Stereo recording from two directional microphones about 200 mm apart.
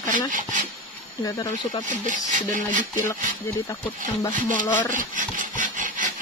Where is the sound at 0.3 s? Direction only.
40° right (ahead or behind).